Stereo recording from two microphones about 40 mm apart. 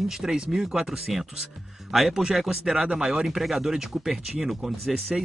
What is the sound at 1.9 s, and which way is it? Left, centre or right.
Speech, centre.